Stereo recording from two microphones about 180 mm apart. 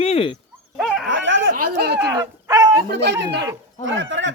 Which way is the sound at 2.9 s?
70° right (ahead or behind).